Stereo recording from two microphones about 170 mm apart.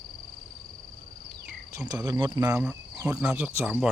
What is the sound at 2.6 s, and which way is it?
Cricket, 5° right (ahead or behind).